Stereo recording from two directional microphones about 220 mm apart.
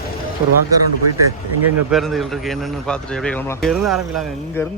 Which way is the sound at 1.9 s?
Centre (ahead or behind).